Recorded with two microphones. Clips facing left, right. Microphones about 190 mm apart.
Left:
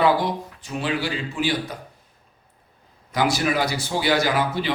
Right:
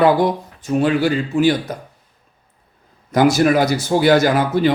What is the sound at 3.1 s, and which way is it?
A man's voice, 45° right (ahead or behind).